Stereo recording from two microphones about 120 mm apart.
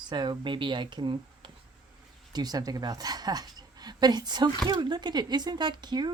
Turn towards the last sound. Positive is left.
turn(degrees=-35)  # may be behind; listen again after turning